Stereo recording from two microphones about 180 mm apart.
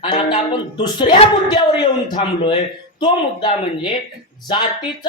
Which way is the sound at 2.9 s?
25° left (ahead or behind).